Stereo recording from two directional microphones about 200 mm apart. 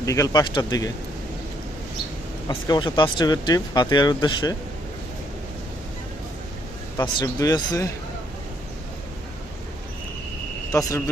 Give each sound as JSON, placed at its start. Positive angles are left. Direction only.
{"t": 0.0, "sound": "speech", "side_deg": 15}
{"t": 2.5, "sound": "speech", "side_deg": 20}
{"t": 6.9, "sound": "speech", "side_deg": 20}
{"t": 10.7, "sound": "speech", "side_deg": 15}